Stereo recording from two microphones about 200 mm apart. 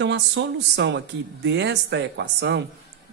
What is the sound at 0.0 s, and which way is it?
Speech, 60° right (ahead or behind).